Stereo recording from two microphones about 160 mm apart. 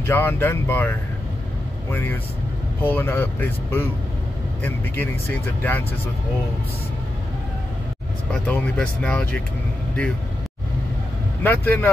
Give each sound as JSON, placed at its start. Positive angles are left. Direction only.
{"t": 0.0, "sound": "speech", "side_deg": 10}
{"t": 8.3, "sound": "speech", "side_deg": 5}
{"t": 11.4, "sound": "speech", "side_deg": 10}